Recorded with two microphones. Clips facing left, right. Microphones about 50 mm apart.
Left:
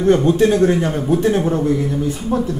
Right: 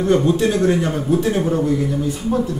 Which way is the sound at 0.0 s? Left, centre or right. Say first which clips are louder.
Left 3 dB; left.